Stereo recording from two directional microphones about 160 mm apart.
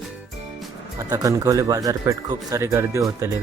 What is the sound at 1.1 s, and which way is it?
Speech, 25° right (ahead or behind).